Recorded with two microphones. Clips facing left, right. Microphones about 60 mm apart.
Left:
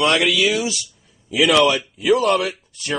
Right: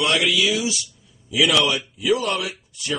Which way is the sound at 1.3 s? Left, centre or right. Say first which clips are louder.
Left 4 dB; left.